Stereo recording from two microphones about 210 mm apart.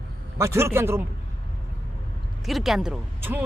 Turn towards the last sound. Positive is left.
turn(degrees=-10)  # may be behind; listen again after turning